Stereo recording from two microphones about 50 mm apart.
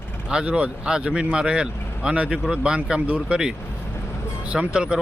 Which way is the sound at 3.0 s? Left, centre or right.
Right.